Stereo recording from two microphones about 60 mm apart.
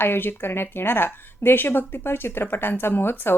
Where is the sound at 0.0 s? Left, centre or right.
Left.